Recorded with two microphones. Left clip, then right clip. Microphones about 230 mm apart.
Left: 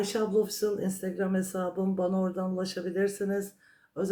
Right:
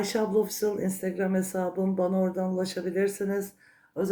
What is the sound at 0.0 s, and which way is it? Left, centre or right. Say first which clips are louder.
Speech: right 1 dB; centre.